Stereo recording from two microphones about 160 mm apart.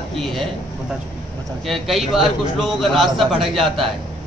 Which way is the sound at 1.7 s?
Centre (ahead or behind).